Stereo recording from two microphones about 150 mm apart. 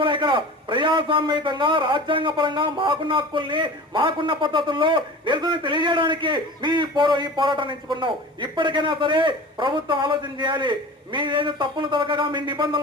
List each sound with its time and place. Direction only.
0.0 s a man's voice: 30° right (ahead or behind)